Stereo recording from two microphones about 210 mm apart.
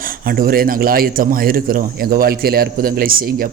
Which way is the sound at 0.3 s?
45° right (ahead or behind).